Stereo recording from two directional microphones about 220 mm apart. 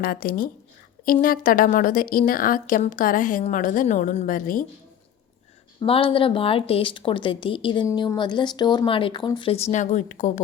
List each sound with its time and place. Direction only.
0.0 s a woman's voice: 40° left (ahead or behind)
5.8 s a woman's voice: 25° left (ahead or behind)